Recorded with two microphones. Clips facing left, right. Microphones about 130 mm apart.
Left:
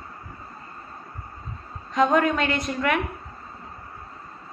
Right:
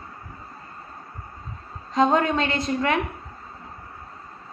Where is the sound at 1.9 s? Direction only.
30° right (ahead or behind).